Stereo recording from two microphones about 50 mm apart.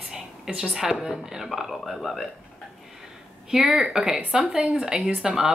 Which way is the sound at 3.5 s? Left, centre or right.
Centre.